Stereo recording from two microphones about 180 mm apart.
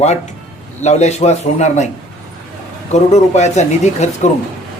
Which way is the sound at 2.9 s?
40° left (ahead or behind).